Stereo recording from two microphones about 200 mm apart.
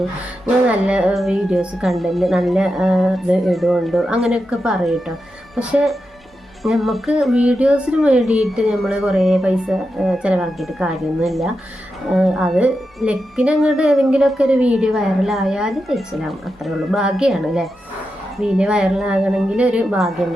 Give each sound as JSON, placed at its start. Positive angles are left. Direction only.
{"t": 0.0, "sound": "a woman's voice", "side_deg": -5}